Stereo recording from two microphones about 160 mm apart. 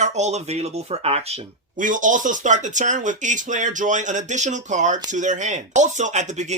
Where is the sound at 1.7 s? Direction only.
55° right (ahead or behind).